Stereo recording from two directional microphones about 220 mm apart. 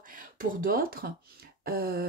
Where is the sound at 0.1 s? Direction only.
40° right (ahead or behind).